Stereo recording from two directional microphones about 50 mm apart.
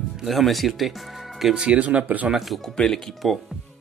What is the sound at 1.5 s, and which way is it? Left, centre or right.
Speech, right.